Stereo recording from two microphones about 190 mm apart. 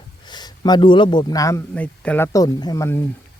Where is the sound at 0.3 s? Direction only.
20° left (ahead or behind).